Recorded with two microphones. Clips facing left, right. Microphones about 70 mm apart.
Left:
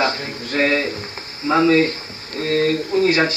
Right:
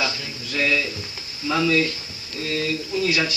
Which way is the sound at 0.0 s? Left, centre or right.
Left.